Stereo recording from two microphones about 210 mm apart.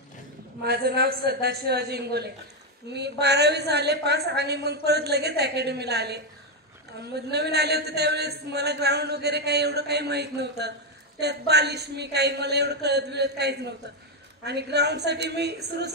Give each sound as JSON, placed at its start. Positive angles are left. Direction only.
{"t": 0.7, "sound": "speech", "side_deg": -50}